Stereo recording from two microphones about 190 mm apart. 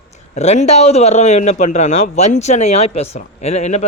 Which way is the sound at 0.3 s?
35° left (ahead or behind).